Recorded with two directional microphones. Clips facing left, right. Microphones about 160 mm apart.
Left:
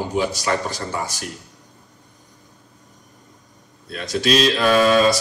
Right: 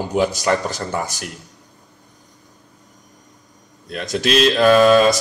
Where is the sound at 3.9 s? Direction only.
50° right (ahead or behind).